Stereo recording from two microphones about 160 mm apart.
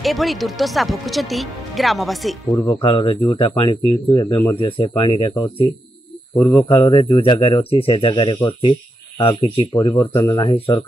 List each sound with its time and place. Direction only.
0.0 s speech: centre (ahead or behind)
2.5 s speech: 20° left (ahead or behind)
2.8 s speech: 30° left (ahead or behind)
6.3 s speech: 15° left (ahead or behind)
6.7 s speech: 35° left (ahead or behind)